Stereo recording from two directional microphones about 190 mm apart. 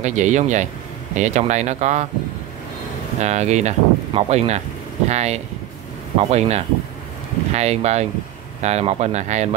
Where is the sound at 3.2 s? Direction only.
35° right (ahead or behind).